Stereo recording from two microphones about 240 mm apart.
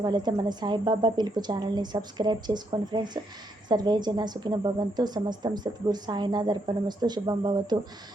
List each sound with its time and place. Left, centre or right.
0.0 s a woman's voice: centre